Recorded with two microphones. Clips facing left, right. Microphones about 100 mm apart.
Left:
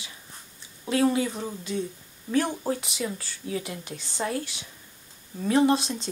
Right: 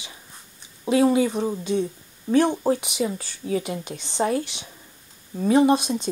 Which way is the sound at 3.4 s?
30° right (ahead or behind).